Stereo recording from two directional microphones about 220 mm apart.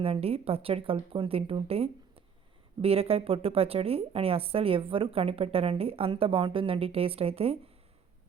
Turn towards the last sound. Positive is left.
turn(degrees=-25)  # may be behind; listen again after turning